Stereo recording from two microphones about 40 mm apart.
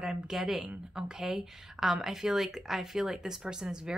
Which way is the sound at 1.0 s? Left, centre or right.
Centre.